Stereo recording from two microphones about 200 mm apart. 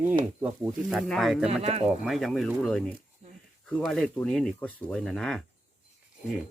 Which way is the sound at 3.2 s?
35° right (ahead or behind).